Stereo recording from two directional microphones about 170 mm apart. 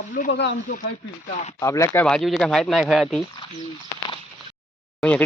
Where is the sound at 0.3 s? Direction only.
85° left.